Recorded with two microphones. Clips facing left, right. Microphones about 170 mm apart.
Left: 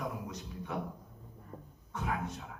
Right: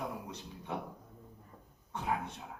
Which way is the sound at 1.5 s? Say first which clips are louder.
Left 8 dB; 55° left (ahead or behind).